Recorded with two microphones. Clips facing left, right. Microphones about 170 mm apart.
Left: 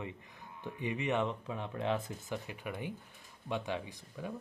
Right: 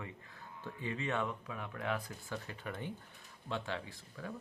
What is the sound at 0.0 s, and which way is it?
Speech, 20° left (ahead or behind).